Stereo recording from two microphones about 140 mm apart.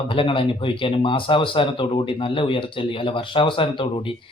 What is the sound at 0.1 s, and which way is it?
Speech, 40° left (ahead or behind).